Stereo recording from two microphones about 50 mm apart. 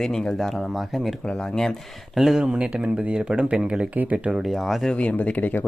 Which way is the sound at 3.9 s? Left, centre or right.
Right.